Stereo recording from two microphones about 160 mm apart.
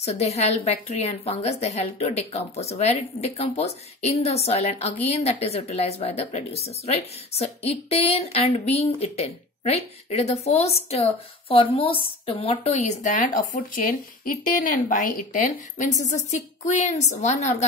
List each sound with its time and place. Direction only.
0.0 s a woman's voice: 40° left (ahead or behind)